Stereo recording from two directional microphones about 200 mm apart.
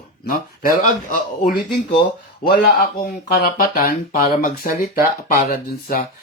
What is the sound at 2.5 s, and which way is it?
Speech, 55° left (ahead or behind).